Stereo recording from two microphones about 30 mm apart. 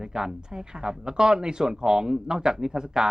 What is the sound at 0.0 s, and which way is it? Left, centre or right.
Speech, right.